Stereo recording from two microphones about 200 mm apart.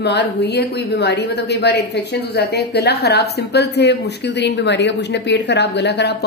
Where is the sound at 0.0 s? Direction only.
55° left (ahead or behind).